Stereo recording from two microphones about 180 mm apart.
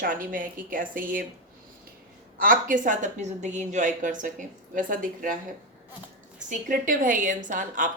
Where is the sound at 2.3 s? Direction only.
50° right (ahead or behind).